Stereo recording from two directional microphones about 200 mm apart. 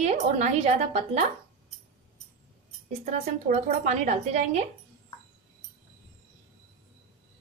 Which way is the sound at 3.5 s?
35° right (ahead or behind).